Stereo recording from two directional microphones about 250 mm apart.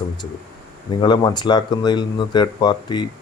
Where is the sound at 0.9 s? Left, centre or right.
Centre.